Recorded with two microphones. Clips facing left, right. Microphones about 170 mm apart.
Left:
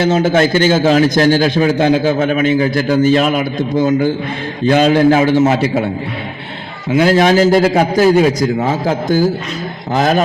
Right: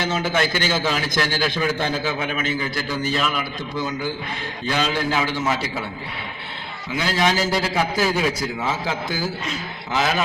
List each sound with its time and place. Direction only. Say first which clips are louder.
0.0 s a man's voice: left 10 dB; 50° left (ahead or behind)
6.9 s a man's voice: left 11 dB; 50° left (ahead or behind)